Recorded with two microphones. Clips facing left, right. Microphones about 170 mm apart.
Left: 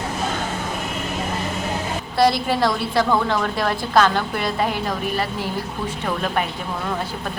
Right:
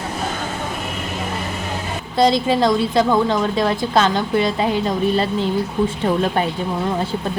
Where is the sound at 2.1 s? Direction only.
20° right (ahead or behind).